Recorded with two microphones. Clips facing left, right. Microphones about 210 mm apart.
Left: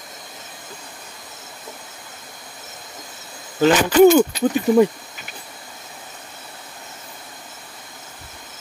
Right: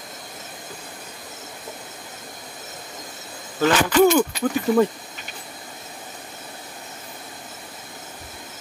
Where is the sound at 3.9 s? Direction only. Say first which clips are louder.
Left 6 dB; 25° left (ahead or behind).